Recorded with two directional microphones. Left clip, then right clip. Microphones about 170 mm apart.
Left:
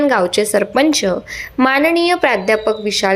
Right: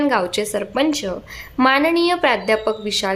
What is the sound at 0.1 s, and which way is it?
A woman's voice, 10° left (ahead or behind).